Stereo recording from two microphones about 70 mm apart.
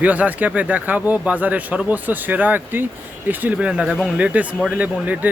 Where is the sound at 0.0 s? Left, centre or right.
Right.